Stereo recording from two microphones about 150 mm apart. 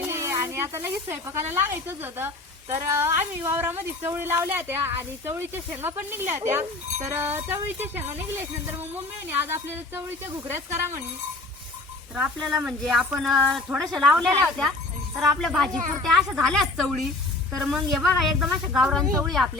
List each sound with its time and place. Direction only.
0.1 s snake: 20° right (ahead or behind)
1.5 s a woman's voice: 15° right (ahead or behind)
12.1 s speech: 5° right (ahead or behind)
15.4 s speech: centre (ahead or behind)